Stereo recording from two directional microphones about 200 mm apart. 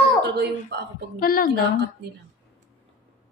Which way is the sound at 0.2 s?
55° right (ahead or behind).